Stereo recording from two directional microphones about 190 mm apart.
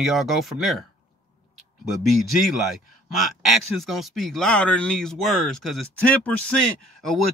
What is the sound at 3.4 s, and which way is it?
Speech, centre (ahead or behind).